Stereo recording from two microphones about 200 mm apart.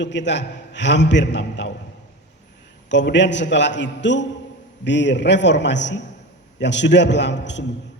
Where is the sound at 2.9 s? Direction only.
60° left (ahead or behind).